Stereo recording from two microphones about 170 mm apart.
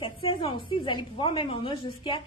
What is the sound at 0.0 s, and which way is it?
A woman's voice, 30° left (ahead or behind).